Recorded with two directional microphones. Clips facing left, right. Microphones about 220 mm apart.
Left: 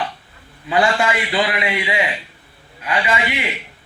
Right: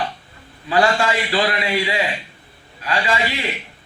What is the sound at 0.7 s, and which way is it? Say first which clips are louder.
A man's voice: even; 20° left (ahead or behind).